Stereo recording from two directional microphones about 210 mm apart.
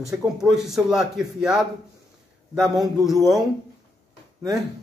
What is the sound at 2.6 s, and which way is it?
Speech, centre (ahead or behind).